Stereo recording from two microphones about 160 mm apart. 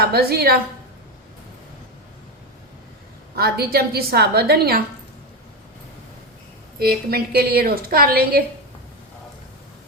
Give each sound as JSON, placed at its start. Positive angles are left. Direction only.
{"t": 0.0, "sound": "a woman's voice", "side_deg": -75}
{"t": 3.3, "sound": "a woman's voice", "side_deg": -75}
{"t": 6.7, "sound": "a woman's voice", "side_deg": -70}